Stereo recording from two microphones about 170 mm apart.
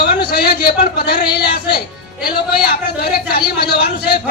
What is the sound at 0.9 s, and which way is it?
A man's voice, 70° left (ahead or behind).